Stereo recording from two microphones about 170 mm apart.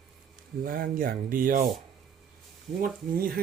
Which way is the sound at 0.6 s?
55° right (ahead or behind).